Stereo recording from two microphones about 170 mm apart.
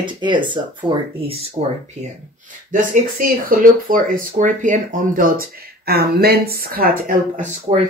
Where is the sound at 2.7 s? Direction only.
55° right (ahead or behind).